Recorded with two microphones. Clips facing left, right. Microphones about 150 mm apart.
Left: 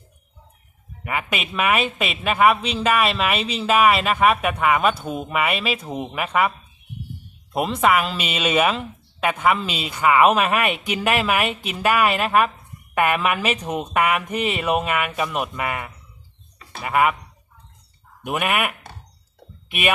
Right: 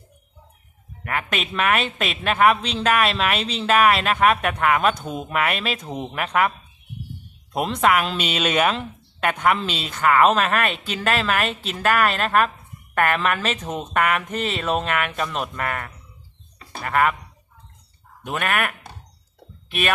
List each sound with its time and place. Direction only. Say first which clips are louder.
1.0 s speech: even; 5° left (ahead or behind)
7.5 s speech: left 1 dB; 5° left (ahead or behind)
18.2 s speech: left 2 dB; 10° left (ahead or behind)